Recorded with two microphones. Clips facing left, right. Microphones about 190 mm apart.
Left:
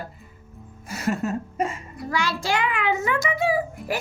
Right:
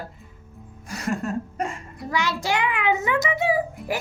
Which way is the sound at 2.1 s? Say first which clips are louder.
Even; 20° right (ahead or behind).